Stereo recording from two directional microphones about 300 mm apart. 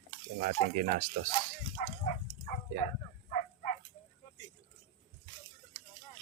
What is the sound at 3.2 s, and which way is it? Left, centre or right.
Dog, left.